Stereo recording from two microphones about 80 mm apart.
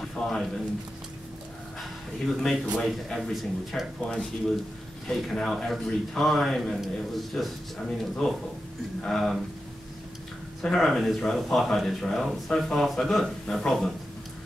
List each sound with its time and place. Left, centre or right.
0.0 s a man's voice: centre
1.8 s speech: centre
10.6 s speech: centre